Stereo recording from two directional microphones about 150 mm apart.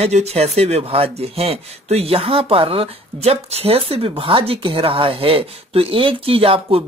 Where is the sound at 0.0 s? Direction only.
45° right (ahead or behind).